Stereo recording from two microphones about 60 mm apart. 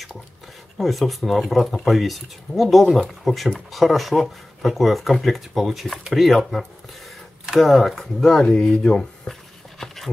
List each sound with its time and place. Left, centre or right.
0.7 s speech: centre
7.6 s speech: centre
9.8 s a sound: centre